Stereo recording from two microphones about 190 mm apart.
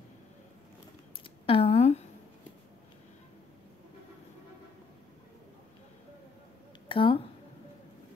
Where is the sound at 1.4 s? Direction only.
30° left (ahead or behind).